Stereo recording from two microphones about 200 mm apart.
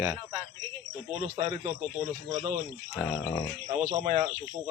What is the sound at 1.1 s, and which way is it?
Speech, 30° right (ahead or behind).